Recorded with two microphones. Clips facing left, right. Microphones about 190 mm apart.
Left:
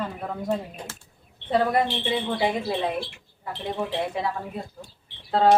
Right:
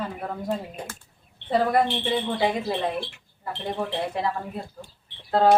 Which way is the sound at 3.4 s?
Centre (ahead or behind).